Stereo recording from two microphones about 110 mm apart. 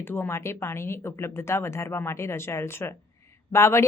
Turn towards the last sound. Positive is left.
turn(degrees=25)  # may be behind; listen again after turning